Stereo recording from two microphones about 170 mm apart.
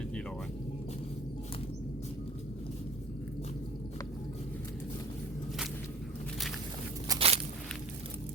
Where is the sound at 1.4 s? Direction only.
35° left (ahead or behind).